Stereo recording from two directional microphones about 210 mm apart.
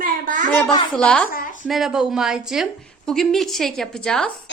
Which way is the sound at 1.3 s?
40° left (ahead or behind).